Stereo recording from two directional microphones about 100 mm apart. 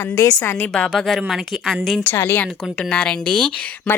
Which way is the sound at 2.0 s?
20° left (ahead or behind).